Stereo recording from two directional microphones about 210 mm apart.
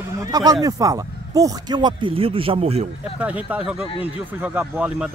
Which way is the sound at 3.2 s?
5° right (ahead or behind).